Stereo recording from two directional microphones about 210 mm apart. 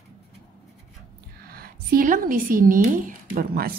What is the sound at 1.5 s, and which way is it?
A woman's voice, 45° right (ahead or behind).